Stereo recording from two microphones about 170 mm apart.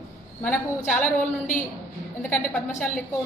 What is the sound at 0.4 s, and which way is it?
Speech, 10° left (ahead or behind).